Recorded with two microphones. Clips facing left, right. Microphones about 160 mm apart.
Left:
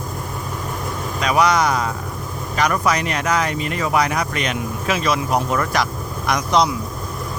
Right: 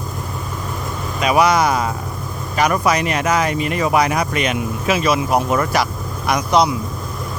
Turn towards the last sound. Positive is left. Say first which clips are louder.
# right 2 dB
turn(degrees=-10)  # may be behind; listen again after turning